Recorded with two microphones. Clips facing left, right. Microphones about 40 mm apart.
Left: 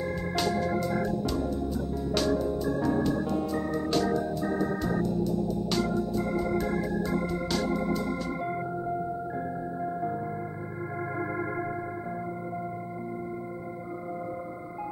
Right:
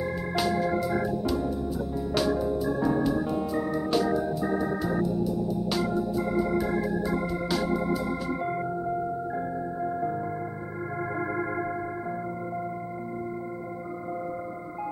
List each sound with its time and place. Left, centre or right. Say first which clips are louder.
0.0 s organ: right 1 dB; centre
11.1 s music: right 2 dB; centre